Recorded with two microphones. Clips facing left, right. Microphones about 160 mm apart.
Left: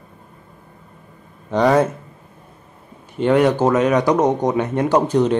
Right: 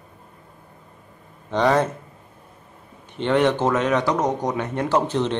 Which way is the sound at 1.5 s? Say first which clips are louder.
Left 4 dB; 10° left (ahead or behind).